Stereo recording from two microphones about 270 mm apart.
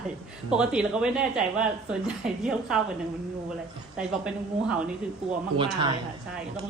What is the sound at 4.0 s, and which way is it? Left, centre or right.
Speech, centre.